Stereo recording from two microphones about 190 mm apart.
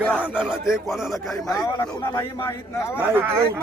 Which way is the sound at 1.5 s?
15° left (ahead or behind).